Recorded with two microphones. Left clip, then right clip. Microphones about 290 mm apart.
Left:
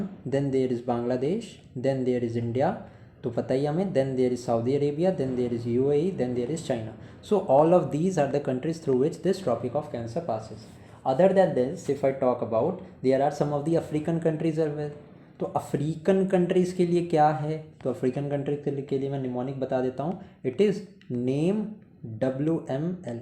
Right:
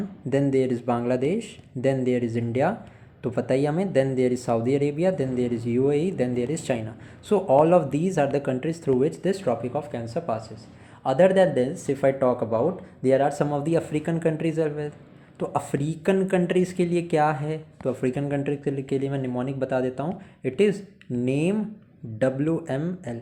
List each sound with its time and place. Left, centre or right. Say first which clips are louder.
0.3 s speech: right 3 dB; centre
13.1 s speech: right 2 dB; centre